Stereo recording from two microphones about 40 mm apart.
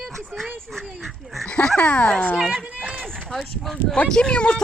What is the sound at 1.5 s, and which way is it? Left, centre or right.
Speech, left.